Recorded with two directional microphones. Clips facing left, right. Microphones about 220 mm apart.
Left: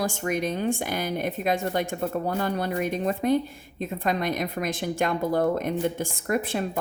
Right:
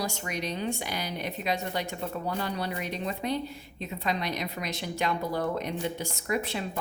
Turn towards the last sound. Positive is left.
turn(degrees=50)  # may be behind; listen again after turning